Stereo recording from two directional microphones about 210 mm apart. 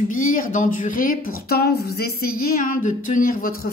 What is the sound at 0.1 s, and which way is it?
Speech, 40° left (ahead or behind).